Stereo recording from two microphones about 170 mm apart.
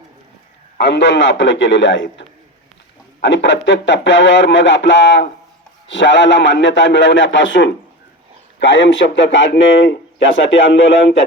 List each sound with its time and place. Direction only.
0.8 s a man's voice: 90° left